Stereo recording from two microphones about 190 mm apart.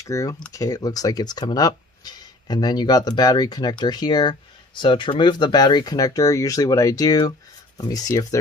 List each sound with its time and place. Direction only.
0.0 s speech: 15° left (ahead or behind)